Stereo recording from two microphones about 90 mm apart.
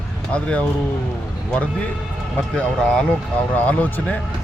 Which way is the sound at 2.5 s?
10° left (ahead or behind).